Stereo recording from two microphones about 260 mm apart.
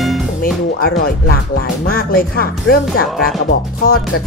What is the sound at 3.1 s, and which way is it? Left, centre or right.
Speech, centre.